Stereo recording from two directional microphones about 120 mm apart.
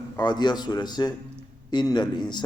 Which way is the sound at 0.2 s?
35° left (ahead or behind).